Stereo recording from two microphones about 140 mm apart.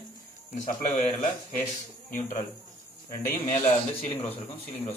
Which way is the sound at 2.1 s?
65° left (ahead or behind).